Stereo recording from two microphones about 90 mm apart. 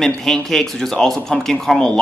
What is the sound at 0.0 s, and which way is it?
Speech, 5° left (ahead or behind).